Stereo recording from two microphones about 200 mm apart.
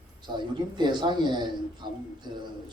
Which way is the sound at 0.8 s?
20° right (ahead or behind).